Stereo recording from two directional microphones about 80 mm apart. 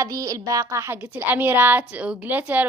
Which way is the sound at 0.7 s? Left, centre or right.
Right.